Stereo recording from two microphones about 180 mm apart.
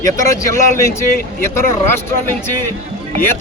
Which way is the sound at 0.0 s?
15° left (ahead or behind).